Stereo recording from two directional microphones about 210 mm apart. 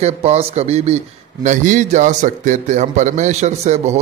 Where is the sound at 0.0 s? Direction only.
30° right (ahead or behind).